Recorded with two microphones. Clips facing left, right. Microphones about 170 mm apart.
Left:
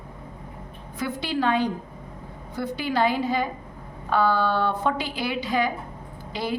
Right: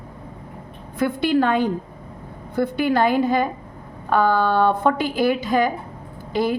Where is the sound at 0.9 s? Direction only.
55° right (ahead or behind).